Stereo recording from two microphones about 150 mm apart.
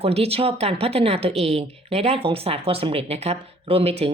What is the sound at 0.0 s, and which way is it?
Speech, 40° right (ahead or behind).